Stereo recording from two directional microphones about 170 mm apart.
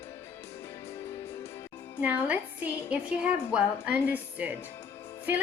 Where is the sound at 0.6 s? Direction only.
15° left (ahead or behind).